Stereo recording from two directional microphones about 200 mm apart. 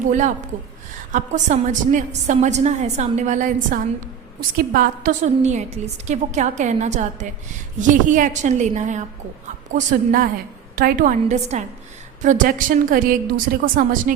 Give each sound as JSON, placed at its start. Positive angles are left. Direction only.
{"t": 0.1, "sound": "a woman's voice", "side_deg": -40}